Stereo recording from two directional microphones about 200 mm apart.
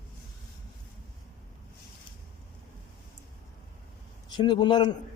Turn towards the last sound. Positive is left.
turn(degrees=20)  # may be behind; listen again after turning